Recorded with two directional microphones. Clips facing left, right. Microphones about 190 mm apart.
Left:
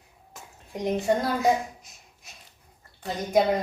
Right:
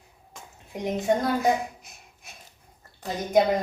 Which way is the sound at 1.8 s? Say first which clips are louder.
Right 3 dB; 55° right (ahead or behind).